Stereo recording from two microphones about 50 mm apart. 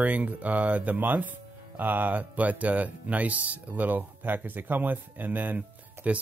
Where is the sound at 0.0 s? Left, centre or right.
Right.